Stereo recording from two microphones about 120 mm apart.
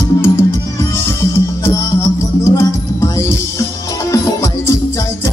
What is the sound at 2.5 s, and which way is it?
Music, 25° left (ahead or behind).